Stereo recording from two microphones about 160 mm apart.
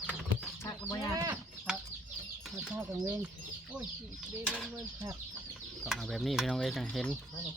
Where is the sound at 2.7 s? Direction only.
15° right (ahead or behind).